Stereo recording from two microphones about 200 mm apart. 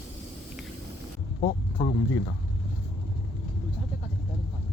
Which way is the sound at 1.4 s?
30° left (ahead or behind).